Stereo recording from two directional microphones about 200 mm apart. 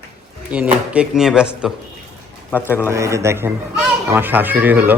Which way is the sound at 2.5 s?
10° left (ahead or behind).